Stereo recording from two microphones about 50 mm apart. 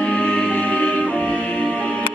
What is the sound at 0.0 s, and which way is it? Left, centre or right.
Music, left.